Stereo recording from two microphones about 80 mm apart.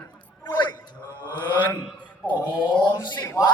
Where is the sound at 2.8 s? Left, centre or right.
Left.